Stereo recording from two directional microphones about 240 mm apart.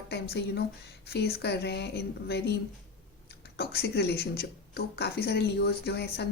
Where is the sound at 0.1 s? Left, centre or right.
Left.